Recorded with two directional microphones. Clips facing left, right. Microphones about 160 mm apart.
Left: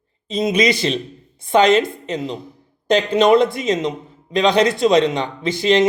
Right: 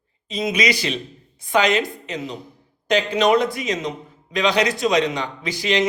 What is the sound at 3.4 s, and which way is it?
A man's voice, 25° left (ahead or behind).